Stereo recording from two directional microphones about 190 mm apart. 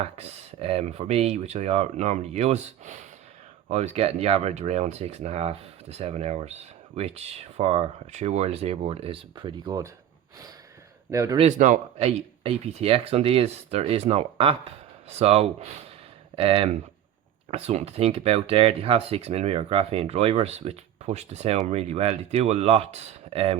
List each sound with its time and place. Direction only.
0.0 s speech: 30° right (ahead or behind)
11.1 s speech: 15° right (ahead or behind)
11.3 s speech: 40° right (ahead or behind)